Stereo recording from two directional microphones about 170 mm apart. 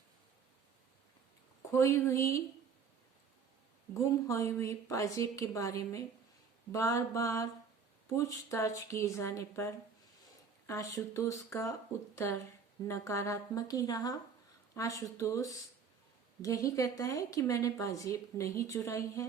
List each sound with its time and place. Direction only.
1.7 s speech: 15° left (ahead or behind)
3.9 s a woman's voice: 20° left (ahead or behind)